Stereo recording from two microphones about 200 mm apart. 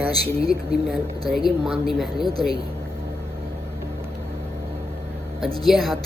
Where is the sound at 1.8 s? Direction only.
Centre (ahead or behind).